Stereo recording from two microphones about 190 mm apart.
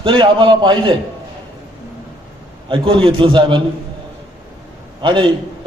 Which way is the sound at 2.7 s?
30° right (ahead or behind).